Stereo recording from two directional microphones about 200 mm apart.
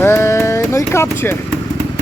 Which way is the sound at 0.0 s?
15° left (ahead or behind).